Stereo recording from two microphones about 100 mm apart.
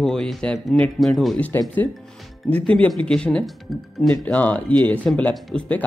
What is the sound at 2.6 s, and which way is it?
Speech, 10° left (ahead or behind).